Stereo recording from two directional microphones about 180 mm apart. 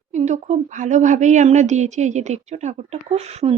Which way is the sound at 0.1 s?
40° right (ahead or behind).